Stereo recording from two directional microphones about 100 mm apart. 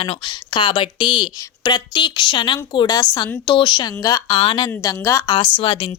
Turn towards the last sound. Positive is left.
turn(degrees=60)  # may be behind; listen again after turning